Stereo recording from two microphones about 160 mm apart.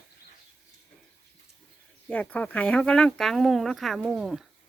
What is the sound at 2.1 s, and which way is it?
Speech, 10° left (ahead or behind).